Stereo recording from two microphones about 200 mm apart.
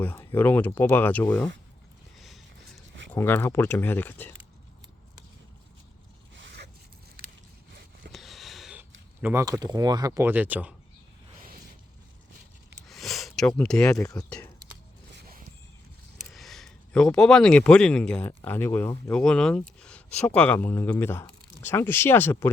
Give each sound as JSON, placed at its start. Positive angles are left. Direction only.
{"t": 0.0, "sound": "speech", "side_deg": 10}
{"t": 2.1, "sound": "a sound", "side_deg": 0}
{"t": 3.2, "sound": "speech", "side_deg": 10}
{"t": 6.3, "sound": "zipper", "side_deg": -60}
{"t": 8.1, "sound": "a sound", "side_deg": 0}
{"t": 9.2, "sound": "speech", "side_deg": -15}
{"t": 12.9, "sound": "a sound", "side_deg": 0}
{"t": 13.6, "sound": "speech", "side_deg": 5}
{"t": 13.9, "sound": "speech", "side_deg": 15}
{"t": 14.3, "sound": "speech", "side_deg": 5}
{"t": 16.3, "sound": "speech", "side_deg": 0}